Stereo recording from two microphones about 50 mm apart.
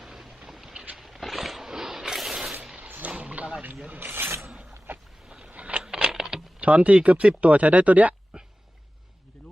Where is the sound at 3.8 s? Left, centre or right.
Right.